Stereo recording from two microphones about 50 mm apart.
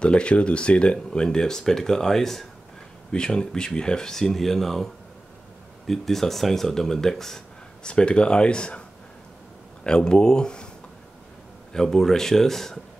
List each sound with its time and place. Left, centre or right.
0.0 s speech: left
9.8 s speech: centre
11.7 s speech: centre